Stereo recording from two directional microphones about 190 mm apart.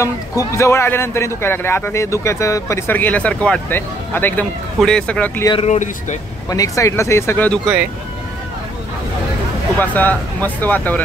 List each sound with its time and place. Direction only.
0.0 s a man's voice: 15° left (ahead or behind)
5.5 s speech: 35° left (ahead or behind)
6.5 s a man's voice: 15° left (ahead or behind)
9.8 s a man's voice: 10° left (ahead or behind)